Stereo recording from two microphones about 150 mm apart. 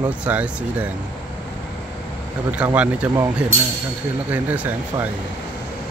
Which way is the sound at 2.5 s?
10° right (ahead or behind).